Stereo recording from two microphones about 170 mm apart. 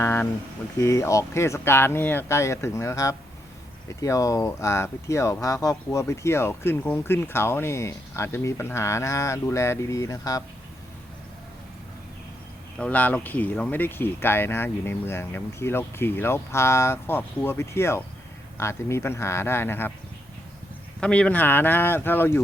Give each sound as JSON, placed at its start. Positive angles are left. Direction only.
{"t": 0.0, "sound": "speech", "side_deg": 15}
{"t": 12.8, "sound": "speech", "side_deg": 10}
{"t": 21.0, "sound": "speech", "side_deg": 5}